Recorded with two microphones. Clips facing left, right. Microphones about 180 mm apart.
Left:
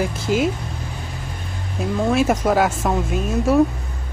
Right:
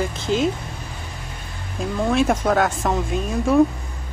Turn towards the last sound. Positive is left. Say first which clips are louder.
# even
turn(degrees=5)  # may be behind; listen again after turning